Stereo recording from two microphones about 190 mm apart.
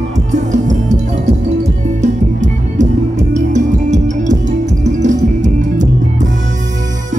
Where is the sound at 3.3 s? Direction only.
40° right (ahead or behind).